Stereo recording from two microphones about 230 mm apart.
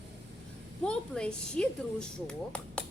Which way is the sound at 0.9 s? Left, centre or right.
Centre.